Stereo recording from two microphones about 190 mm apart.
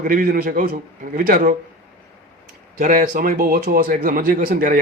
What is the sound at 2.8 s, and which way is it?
A man's voice, 45° right (ahead or behind).